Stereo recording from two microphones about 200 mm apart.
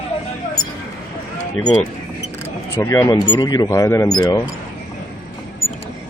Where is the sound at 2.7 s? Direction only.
10° left (ahead or behind).